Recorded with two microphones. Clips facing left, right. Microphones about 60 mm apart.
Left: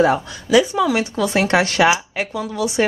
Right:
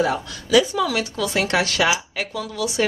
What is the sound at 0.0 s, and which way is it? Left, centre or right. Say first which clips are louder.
Speech: left 5 dB; left.